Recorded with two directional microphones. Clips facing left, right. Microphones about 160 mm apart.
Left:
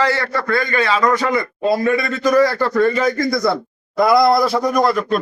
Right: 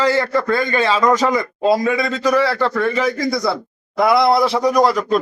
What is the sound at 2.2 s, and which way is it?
A man's voice, centre (ahead or behind).